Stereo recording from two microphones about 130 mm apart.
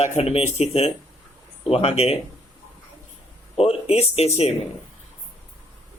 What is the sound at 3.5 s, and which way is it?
Speech, 50° left (ahead or behind).